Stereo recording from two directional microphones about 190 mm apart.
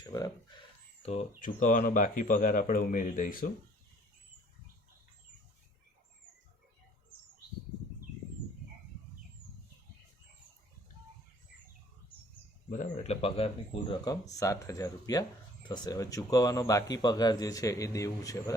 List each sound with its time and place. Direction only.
0.0 s chicken: 20° left (ahead or behind)
1.0 s speech: 35° left (ahead or behind)
1.4 s speech: 45° left (ahead or behind)
12.7 s speech: 40° left (ahead or behind); by 18.5 s 20° left (ahead or behind)